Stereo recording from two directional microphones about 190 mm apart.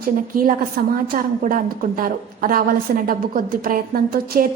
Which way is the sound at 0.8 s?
45° right (ahead or behind).